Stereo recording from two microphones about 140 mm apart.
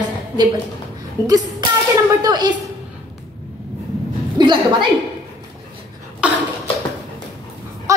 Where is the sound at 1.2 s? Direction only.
25° right (ahead or behind).